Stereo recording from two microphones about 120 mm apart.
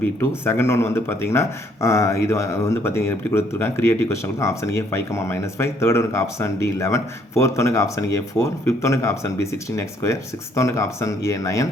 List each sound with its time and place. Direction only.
0.0 s speech: 20° left (ahead or behind)